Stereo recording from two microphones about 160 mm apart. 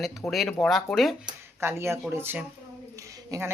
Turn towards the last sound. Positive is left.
turn(degrees=-20)  # may be behind; listen again after turning